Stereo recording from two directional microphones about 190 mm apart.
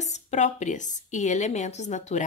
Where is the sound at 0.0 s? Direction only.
35° left (ahead or behind).